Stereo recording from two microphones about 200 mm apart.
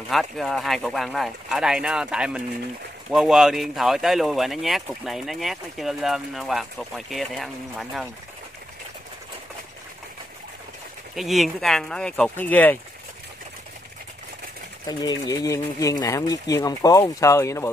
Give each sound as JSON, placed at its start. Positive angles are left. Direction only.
{"t": 0.1, "sound": "speech", "side_deg": 0}
{"t": 11.1, "sound": "speech", "side_deg": 0}
{"t": 14.9, "sound": "speech", "side_deg": 20}